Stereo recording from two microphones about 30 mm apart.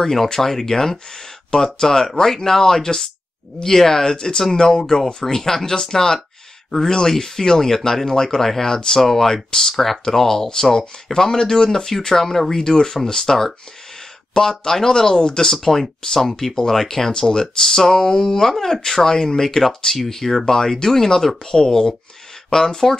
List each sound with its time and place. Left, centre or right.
0.0 s speech: centre
15.5 s speech: centre